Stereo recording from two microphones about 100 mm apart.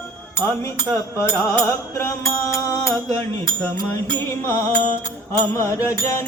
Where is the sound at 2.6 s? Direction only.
35° left (ahead or behind).